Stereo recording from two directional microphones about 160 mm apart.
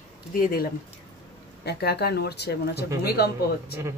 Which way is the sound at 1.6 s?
90° left.